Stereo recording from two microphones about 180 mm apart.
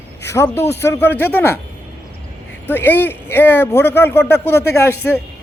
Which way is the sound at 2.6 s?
10° left (ahead or behind).